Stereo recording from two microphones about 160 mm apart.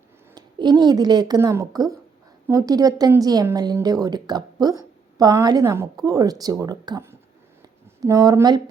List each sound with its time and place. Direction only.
0.3 s a woman's voice: 25° right (ahead or behind)